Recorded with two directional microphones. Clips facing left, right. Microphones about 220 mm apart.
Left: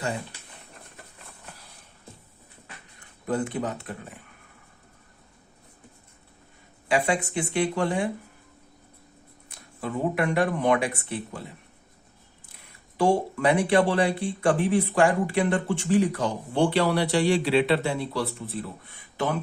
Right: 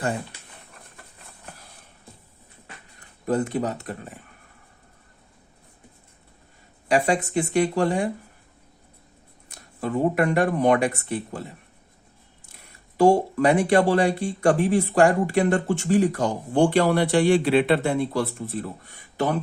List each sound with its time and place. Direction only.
3.2 s speech: 40° right (ahead or behind)
6.8 s speech: 40° right (ahead or behind)
9.8 s speech: 45° right (ahead or behind)
13.0 s speech: 40° right (ahead or behind)